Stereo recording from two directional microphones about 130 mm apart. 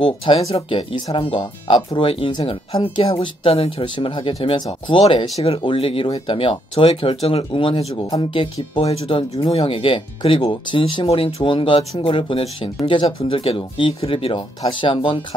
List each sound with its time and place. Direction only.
0.0 s speech: 40° left (ahead or behind)